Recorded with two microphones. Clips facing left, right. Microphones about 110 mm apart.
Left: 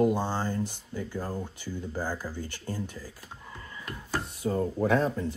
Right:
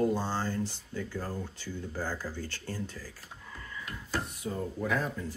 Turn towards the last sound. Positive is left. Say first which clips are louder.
# left 6 dB
turn(degrees=30)  # may be behind; listen again after turning